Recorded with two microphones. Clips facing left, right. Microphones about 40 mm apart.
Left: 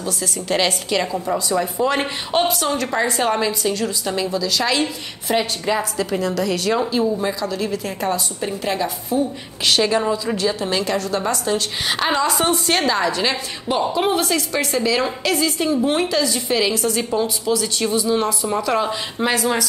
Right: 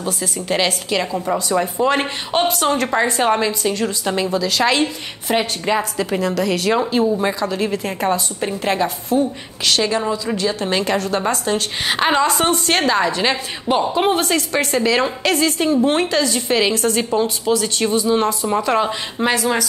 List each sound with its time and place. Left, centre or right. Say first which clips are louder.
0.2 s speech: even; centre
7.2 s a woman's voice: right 3 dB; right
9.7 s a woman's voice: left 1 dB; centre
10.6 s a woman's voice: right 2 dB; centre
19.1 s a woman's voice: right 2 dB; centre